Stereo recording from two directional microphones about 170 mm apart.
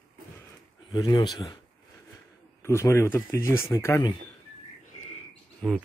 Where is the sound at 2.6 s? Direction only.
15° left (ahead or behind).